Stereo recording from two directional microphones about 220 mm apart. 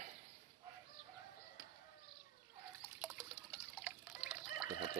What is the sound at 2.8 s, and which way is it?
Water, 10° right (ahead or behind).